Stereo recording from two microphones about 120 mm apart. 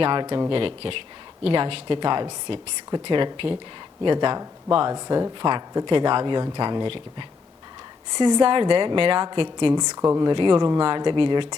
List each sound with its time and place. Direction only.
0.0 s a woman's voice: 40° right (ahead or behind)
4.9 s a woman's voice: 30° right (ahead or behind)
10.2 s speech: 40° right (ahead or behind)